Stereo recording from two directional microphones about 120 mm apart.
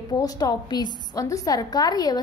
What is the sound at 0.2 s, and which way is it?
A woman's voice, 30° left (ahead or behind).